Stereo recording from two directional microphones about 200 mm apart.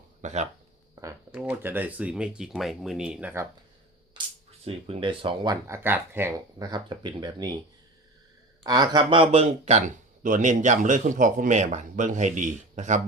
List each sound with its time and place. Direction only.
0.2 s speech: 35° right (ahead or behind)
1.3 s speech: 5° right (ahead or behind)
4.6 s speech: 25° right (ahead or behind)
5.6 s speech: 10° right (ahead or behind)
8.6 s speech: 20° right (ahead or behind); by 13.0 s 35° right (ahead or behind)